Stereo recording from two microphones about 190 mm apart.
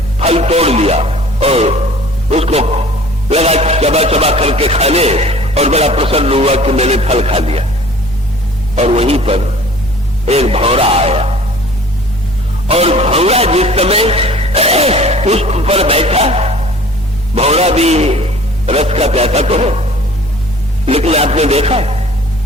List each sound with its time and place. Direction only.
0.2 s speech: 30° right (ahead or behind)
8.7 s speech: 35° right (ahead or behind)
12.6 s speech: 30° right (ahead or behind)